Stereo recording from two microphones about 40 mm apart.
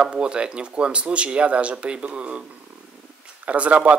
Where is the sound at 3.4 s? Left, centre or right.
Right.